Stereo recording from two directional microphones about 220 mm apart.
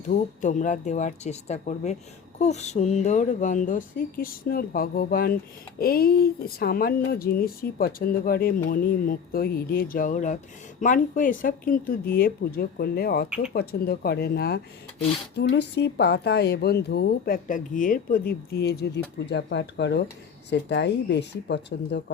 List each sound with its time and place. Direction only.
0.0 s speech: 35° left (ahead or behind); by 22.0 s 50° left (ahead or behind)